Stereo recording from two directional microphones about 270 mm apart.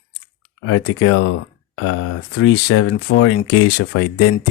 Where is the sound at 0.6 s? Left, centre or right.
Left.